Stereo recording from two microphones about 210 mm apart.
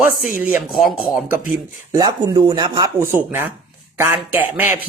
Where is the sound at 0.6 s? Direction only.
Centre (ahead or behind).